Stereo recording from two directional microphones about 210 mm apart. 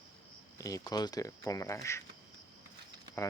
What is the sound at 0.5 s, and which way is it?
Speech, 15° left (ahead or behind).